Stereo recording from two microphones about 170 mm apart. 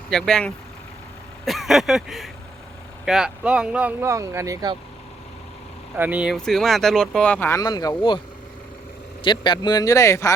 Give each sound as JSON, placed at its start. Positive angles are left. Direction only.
{"t": 0.1, "sound": "speech", "side_deg": 5}
{"t": 6.0, "sound": "speech", "side_deg": -10}
{"t": 7.6, "sound": "speech", "side_deg": 20}
{"t": 9.2, "sound": "speech", "side_deg": 25}